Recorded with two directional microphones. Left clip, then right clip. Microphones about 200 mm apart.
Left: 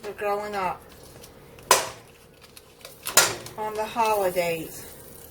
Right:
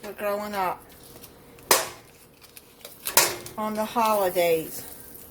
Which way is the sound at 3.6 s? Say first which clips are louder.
Even; 45° right (ahead or behind).